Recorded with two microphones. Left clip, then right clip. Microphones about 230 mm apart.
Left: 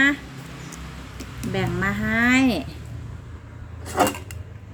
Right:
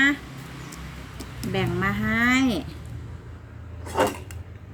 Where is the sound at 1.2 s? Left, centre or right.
Centre.